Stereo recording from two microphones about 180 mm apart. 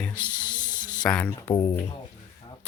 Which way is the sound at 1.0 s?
10° left (ahead or behind).